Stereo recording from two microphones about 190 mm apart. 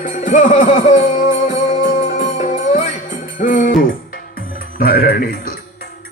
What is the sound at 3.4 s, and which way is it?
Speech, 45° left (ahead or behind).